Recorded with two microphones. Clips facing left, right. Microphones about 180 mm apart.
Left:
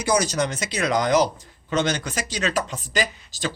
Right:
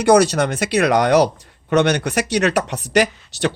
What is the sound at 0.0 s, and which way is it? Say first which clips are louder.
Speech: right 8 dB; 65° right (ahead or behind).